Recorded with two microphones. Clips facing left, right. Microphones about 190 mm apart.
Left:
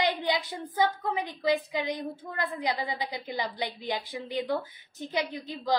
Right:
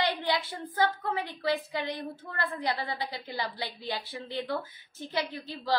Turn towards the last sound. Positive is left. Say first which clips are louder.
# left 2 dB
turn(degrees=15)  # may be behind; listen again after turning